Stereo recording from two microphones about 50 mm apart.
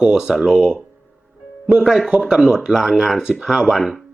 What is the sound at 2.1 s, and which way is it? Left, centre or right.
Speech, centre.